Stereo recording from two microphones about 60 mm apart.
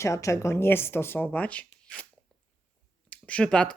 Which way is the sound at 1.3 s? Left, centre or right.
Left.